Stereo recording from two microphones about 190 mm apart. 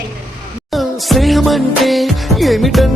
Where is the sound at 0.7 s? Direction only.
Centre (ahead or behind).